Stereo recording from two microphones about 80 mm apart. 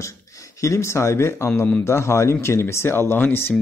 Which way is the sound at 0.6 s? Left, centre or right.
Left.